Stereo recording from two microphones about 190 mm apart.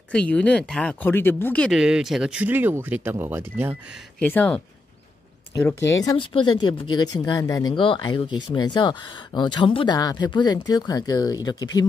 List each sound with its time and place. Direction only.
0.1 s speech: 5° left (ahead or behind); by 3.7 s 10° right (ahead or behind)
4.2 s speech: 10° left (ahead or behind)